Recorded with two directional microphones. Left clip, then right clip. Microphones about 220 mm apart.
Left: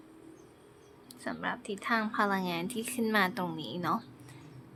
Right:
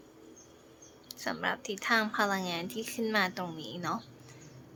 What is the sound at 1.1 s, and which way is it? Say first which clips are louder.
A woman's voice: right 3 dB; centre (ahead or behind).